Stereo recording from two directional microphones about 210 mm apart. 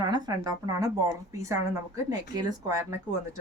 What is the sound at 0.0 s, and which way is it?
Speech, 20° right (ahead or behind).